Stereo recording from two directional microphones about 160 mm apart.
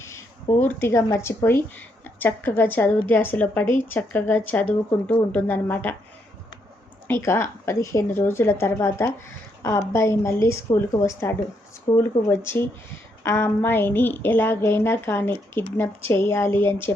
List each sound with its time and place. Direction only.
0.6 s a woman's voice: 15° left (ahead or behind)
7.1 s a woman's voice: 15° left (ahead or behind)